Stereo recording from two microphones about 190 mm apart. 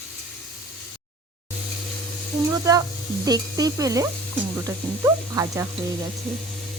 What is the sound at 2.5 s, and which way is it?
Speech, 20° right (ahead or behind).